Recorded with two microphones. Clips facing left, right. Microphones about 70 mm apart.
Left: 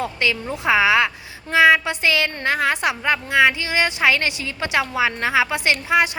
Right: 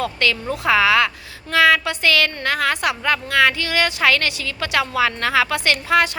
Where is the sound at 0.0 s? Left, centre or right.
Centre.